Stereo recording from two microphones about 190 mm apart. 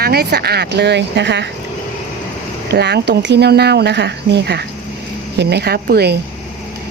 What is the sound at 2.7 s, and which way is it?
Speech, 60° right (ahead or behind).